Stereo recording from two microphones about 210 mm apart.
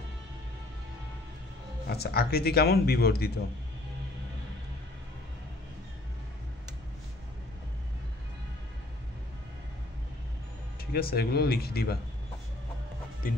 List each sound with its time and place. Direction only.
1.9 s a man's voice: 50° left (ahead or behind)
10.9 s a man's voice: 45° left (ahead or behind)
13.2 s a man's voice: 40° left (ahead or behind)